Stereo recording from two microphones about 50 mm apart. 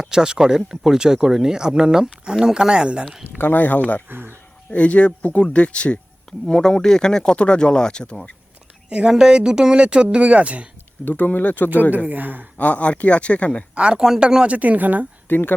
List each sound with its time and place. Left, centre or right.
0.0 s speech: centre
3.3 s speech: left
4.1 s speech: right
4.7 s speech: left
6.5 s speech: centre
8.9 s speech: centre
11.0 s speech: left
11.9 s speech: right
12.5 s speech: left
13.7 s speech: right
14.4 s speech: right
15.3 s speech: left